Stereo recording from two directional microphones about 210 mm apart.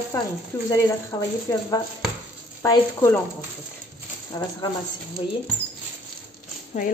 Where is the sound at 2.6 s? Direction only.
15° left (ahead or behind).